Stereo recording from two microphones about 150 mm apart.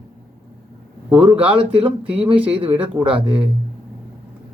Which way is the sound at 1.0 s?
10° right (ahead or behind).